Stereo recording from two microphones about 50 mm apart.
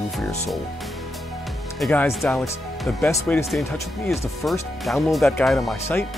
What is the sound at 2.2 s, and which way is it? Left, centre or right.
Speech, left.